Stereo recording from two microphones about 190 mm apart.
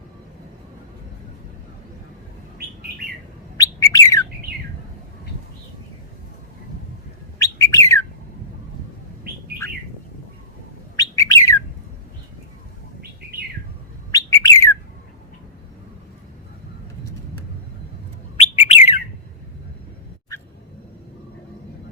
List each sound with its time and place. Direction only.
3.6 s bird: 20° left (ahead or behind)
7.3 s bird: 15° left (ahead or behind)
10.9 s bird: 15° left (ahead or behind)
14.1 s bird: 15° left (ahead or behind)
18.3 s bird: 35° left (ahead or behind)